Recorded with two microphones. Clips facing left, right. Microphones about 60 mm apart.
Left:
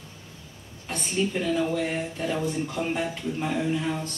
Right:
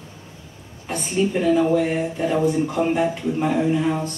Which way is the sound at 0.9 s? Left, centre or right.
Centre.